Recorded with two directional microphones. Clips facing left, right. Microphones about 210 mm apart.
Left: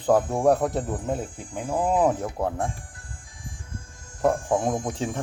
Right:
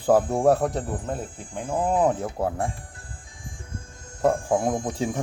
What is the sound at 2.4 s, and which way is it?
Speech, 5° right (ahead or behind).